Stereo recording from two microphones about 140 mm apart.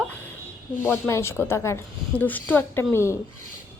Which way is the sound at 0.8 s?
20° left (ahead or behind).